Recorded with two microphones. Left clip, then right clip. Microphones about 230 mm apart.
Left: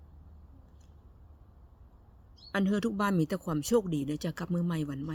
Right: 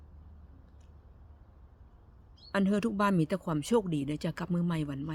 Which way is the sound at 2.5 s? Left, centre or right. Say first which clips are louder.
Right 1 dB; centre.